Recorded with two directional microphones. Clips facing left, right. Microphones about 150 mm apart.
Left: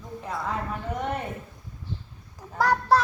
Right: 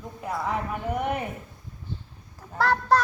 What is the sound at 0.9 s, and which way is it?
Child singing, 10° right (ahead or behind).